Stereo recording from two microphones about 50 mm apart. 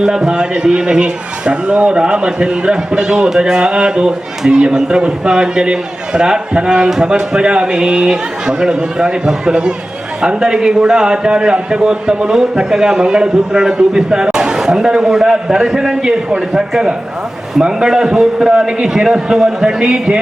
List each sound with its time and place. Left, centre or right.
0.0 s a man's voice: centre